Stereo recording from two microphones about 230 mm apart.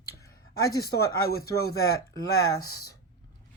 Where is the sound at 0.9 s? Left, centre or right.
Left.